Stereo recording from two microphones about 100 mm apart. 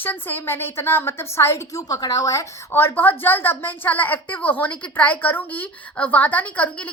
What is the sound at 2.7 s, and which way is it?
A woman's voice, 20° left (ahead or behind).